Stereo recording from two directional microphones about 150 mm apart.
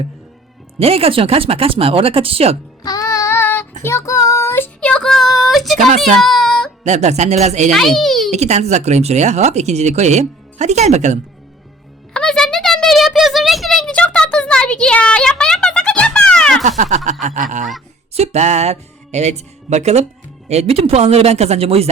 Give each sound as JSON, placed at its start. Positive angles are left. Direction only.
{"t": 0.8, "sound": "speech", "side_deg": -40}
{"t": 2.8, "sound": "child singing", "side_deg": 25}
{"t": 6.8, "sound": "speech", "side_deg": -50}
{"t": 7.7, "sound": "a child's voice", "side_deg": 0}
{"t": 8.3, "sound": "speech", "side_deg": -50}
{"t": 12.1, "sound": "a sound", "side_deg": 5}
{"t": 16.6, "sound": "speech", "side_deg": -55}
{"t": 17.2, "sound": "honk", "side_deg": -55}
{"t": 18.1, "sound": "speech", "side_deg": -45}